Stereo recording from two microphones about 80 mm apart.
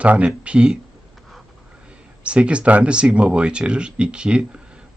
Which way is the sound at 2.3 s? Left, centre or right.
Centre.